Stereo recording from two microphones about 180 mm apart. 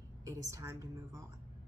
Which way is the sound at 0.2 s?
15° right (ahead or behind).